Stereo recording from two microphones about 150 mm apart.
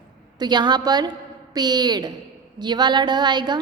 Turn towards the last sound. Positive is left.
turn(degrees=-30)  # may be behind; listen again after turning